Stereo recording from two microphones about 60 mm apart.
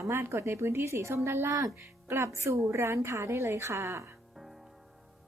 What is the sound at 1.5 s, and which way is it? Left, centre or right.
Speech, right.